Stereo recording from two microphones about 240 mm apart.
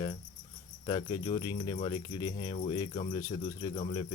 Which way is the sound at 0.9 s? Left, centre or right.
Centre.